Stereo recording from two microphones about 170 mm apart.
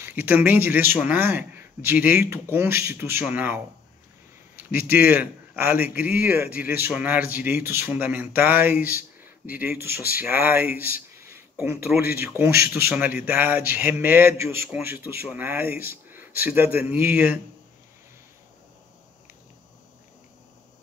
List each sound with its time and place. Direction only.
0.0 s a man's voice: 10° right (ahead or behind)
4.9 s a man's voice: 10° right (ahead or behind)
11.1 s a sound: 15° right (ahead or behind)
12.2 s a man's voice: 10° right (ahead or behind)